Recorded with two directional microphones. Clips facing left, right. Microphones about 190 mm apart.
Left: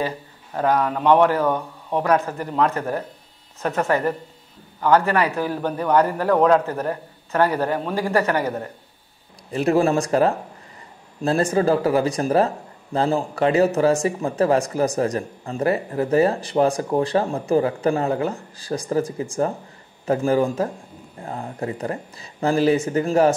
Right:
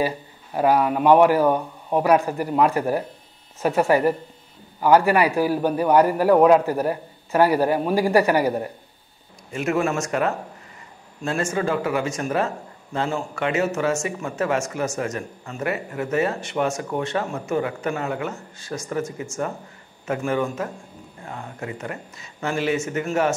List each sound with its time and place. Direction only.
0.6 s a man's voice: 10° right (ahead or behind)
9.5 s speech: 35° left (ahead or behind)